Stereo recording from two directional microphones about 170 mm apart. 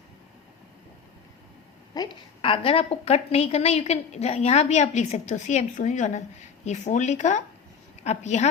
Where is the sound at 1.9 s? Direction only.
25° left (ahead or behind).